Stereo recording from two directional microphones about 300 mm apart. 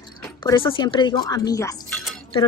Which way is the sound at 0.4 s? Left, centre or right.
Centre.